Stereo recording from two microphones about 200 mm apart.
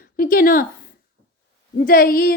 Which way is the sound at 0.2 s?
45° left (ahead or behind).